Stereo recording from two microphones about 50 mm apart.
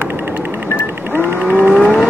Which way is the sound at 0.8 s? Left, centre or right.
Right.